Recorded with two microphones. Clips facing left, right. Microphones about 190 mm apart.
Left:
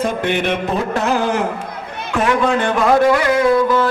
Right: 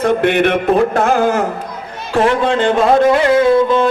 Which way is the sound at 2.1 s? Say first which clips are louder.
Right 3 dB; 30° right (ahead or behind).